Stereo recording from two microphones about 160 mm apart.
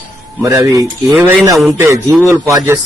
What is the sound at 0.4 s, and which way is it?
Speech, 20° right (ahead or behind).